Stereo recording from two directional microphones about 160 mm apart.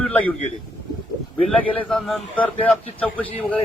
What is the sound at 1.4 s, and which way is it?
A man's voice, 10° left (ahead or behind).